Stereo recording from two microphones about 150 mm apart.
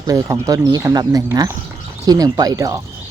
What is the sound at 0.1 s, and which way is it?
Speech, 25° right (ahead or behind).